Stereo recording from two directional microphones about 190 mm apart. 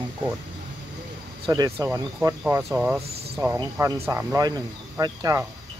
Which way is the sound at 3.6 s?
15° right (ahead or behind).